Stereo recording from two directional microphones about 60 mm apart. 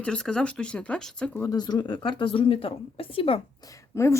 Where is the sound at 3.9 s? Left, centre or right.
Left.